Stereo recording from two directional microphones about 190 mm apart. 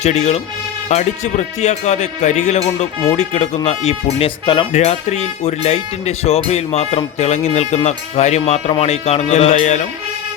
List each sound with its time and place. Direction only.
0.0 s speech: 35° left (ahead or behind)